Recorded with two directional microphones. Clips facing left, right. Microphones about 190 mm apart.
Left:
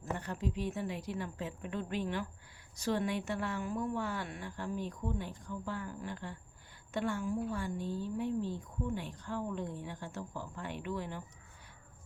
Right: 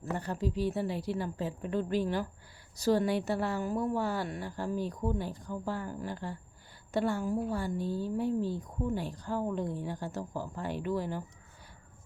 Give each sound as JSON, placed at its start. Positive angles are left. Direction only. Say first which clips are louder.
{"t": 0.2, "sound": "a woman's voice", "louder": "right 5 dB", "side_deg": -35}